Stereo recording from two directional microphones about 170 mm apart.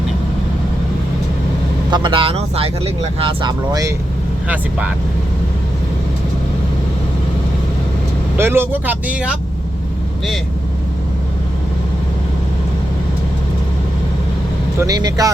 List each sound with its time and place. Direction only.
1.9 s speech: 30° right (ahead or behind)
4.4 s speech: 10° right (ahead or behind)
8.4 s speech: 15° right (ahead or behind)
14.8 s speech: 20° right (ahead or behind)